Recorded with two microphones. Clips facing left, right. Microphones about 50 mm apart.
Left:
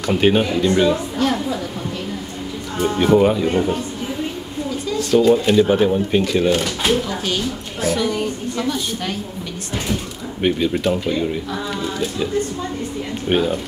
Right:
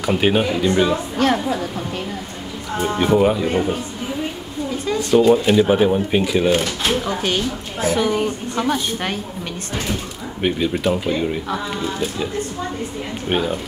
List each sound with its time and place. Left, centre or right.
0.0 s speech: centre
1.3 s speech: right
3.0 s speech: centre
5.3 s speech: centre
6.9 s a woman's voice: right
10.4 s speech: centre
13.3 s speech: centre